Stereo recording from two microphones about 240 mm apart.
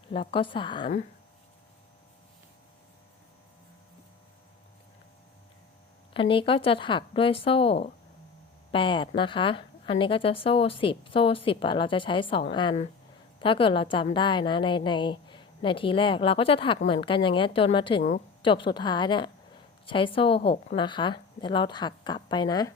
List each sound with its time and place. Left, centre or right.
0.1 s a woman's voice: left
6.1 s a woman's voice: left